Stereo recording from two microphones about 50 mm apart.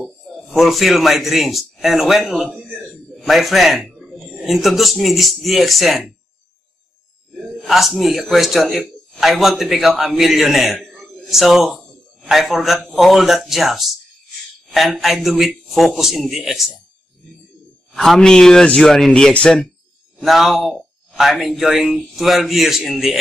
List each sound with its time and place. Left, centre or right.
0.6 s a man's voice: centre
2.7 s a sound: centre
4.0 s speech: centre
7.3 s a sound: centre
8.2 s a man's voice: centre
10.9 s a sound: centre
11.2 s a man's voice: centre
17.9 s speech: centre
20.2 s a man's voice: centre